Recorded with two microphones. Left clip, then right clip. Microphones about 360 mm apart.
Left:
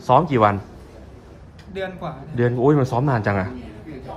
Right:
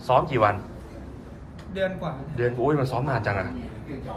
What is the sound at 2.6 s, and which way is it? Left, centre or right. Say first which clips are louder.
Speech: left 9 dB; left.